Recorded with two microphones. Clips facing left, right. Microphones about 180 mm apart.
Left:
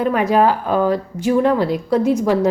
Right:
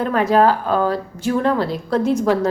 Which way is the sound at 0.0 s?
15° left (ahead or behind).